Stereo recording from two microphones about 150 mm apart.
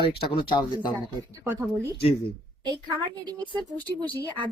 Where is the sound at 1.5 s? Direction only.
20° right (ahead or behind).